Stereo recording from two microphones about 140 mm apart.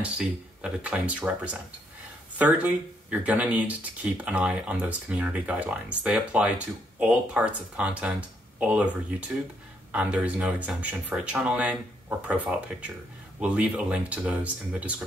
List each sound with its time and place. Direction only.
0.0 s speech: 5° right (ahead or behind)
9.9 s speech: 10° right (ahead or behind)